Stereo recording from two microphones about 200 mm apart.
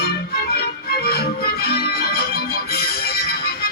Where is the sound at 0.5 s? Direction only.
50° left (ahead or behind).